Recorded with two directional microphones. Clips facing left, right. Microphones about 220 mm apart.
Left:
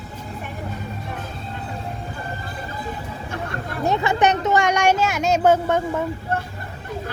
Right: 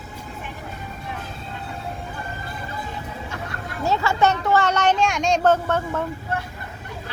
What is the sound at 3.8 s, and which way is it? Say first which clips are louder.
Speech: left 1 dB; 20° left (ahead or behind).